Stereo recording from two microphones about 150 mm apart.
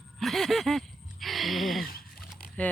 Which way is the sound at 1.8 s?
80° left.